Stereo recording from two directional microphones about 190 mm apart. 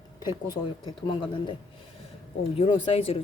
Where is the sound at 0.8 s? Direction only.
25° left (ahead or behind).